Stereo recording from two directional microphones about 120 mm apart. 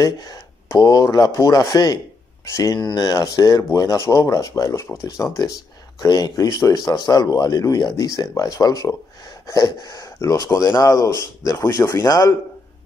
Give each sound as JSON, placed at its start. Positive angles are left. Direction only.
{"t": 0.0, "sound": "speech", "side_deg": 30}